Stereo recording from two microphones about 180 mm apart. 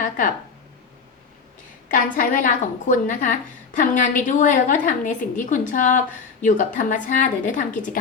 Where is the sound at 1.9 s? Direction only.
50° left (ahead or behind).